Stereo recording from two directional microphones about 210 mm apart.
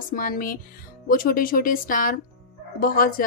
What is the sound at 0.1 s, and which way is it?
A woman's voice, 40° left (ahead or behind).